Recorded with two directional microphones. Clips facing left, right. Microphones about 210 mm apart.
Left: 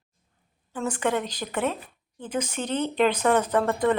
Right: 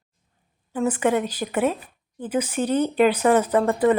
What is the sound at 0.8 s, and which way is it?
A woman's voice, 10° right (ahead or behind).